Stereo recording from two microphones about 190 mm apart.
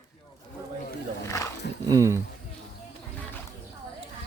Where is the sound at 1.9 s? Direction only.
15° right (ahead or behind).